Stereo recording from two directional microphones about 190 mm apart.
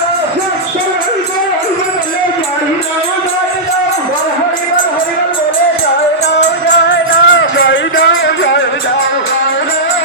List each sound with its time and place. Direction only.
6.4 s music: 75° left (ahead or behind)